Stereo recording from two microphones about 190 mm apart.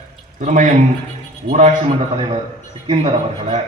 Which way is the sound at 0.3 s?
40° right (ahead or behind).